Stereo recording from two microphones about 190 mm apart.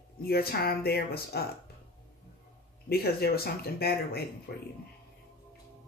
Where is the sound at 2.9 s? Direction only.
55° left (ahead or behind).